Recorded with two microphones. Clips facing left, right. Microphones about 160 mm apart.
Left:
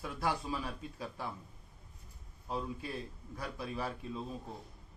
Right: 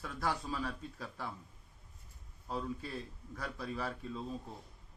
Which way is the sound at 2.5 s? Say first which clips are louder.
Left 1 dB; 15° left (ahead or behind).